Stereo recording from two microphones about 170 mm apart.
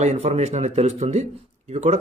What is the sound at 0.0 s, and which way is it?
Speech, 40° right (ahead or behind).